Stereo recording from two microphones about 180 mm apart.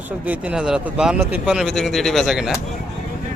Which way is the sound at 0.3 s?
5° right (ahead or behind).